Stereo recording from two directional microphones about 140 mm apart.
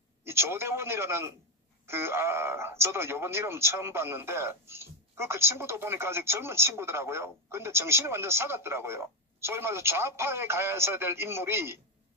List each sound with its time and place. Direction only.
0.2 s speech: 20° right (ahead or behind)